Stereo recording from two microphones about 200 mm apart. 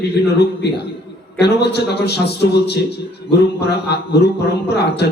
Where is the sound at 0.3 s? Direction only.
55° left (ahead or behind).